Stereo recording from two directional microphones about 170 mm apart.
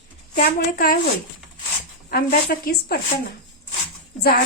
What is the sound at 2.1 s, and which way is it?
Speech, 60° left (ahead or behind).